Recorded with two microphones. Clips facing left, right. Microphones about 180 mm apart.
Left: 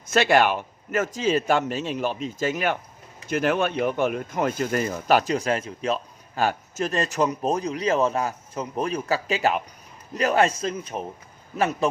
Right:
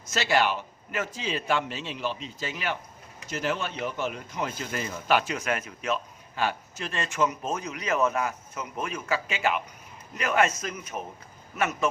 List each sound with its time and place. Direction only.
0.1 s a man's voice: 55° left (ahead or behind); by 11.9 s 30° left (ahead or behind)